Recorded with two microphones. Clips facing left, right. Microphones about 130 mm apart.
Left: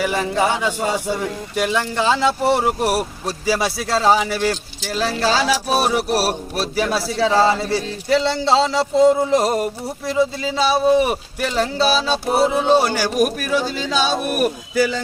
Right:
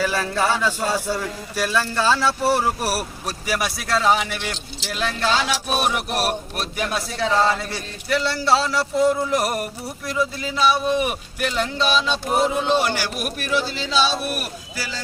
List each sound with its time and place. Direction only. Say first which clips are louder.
0.0 s speech: left 3 dB; 15° left (ahead or behind); by 14.5 s 45° left (ahead or behind)